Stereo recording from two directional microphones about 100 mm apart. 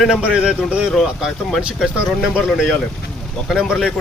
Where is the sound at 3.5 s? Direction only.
5° right (ahead or behind).